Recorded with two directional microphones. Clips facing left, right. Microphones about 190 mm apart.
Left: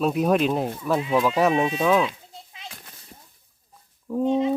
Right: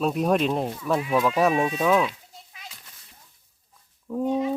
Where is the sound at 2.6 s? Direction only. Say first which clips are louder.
Left 5 dB; 55° left (ahead or behind).